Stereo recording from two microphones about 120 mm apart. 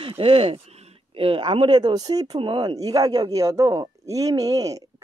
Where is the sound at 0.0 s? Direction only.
50° right (ahead or behind).